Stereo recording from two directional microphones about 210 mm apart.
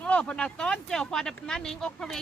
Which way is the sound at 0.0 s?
5° left (ahead or behind).